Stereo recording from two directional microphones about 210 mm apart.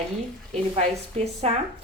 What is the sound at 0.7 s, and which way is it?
Speech, 30° right (ahead or behind).